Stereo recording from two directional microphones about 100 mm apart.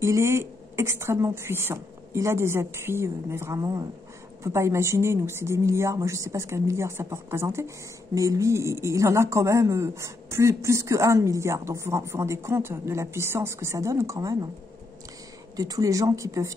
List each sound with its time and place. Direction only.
0.0 s a woman's voice: 30° right (ahead or behind)
15.5 s speech: 35° right (ahead or behind)